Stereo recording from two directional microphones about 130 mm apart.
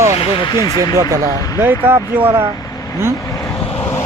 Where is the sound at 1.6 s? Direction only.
20° right (ahead or behind).